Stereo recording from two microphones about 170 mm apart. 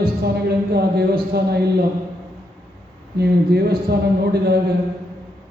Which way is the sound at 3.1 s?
70° right (ahead or behind).